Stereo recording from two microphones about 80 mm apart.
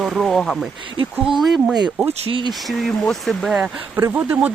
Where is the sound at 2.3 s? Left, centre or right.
Right.